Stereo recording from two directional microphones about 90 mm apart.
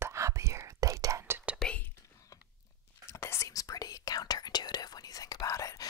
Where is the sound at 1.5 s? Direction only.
5° left (ahead or behind).